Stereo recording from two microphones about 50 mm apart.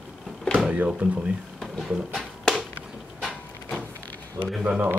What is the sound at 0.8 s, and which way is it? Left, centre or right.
Speech, right.